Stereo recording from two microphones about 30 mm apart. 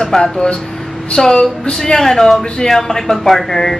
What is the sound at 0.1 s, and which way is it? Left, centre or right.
Speech, centre.